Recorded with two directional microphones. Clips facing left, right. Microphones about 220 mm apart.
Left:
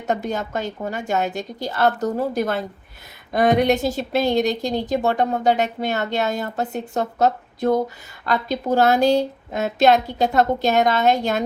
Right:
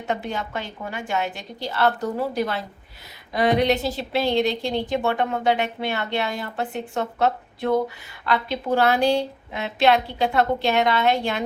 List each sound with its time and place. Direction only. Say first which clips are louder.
0.1 s a woman's voice: left 4 dB; 45° left (ahead or behind)